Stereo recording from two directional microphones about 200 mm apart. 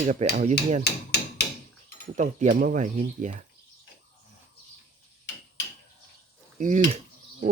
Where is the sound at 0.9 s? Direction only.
55° left (ahead or behind).